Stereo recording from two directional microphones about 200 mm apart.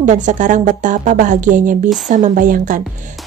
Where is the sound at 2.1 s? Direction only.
40° right (ahead or behind).